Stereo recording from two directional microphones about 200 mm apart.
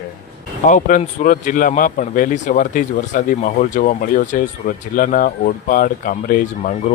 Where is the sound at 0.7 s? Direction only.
40° left (ahead or behind).